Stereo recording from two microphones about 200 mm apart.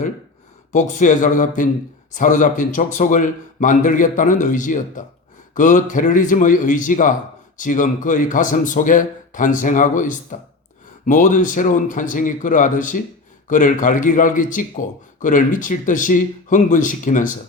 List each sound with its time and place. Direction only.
0.7 s a man's voice: 40° left (ahead or behind)